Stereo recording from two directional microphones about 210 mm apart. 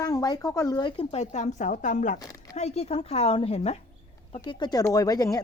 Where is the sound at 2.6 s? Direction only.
30° left (ahead or behind).